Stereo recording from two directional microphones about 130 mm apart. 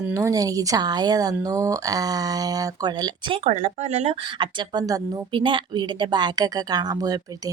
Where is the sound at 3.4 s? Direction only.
60° right (ahead or behind).